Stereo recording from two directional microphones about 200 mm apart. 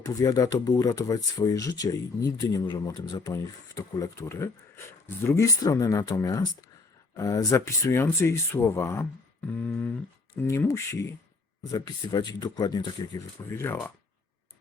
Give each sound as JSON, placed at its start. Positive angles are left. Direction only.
{"t": 0.0, "sound": "speech", "side_deg": 20}